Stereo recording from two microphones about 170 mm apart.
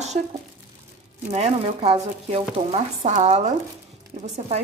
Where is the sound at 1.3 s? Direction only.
35° right (ahead or behind).